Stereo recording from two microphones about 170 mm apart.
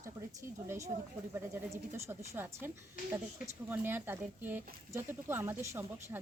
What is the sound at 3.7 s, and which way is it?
Speech, 10° right (ahead or behind).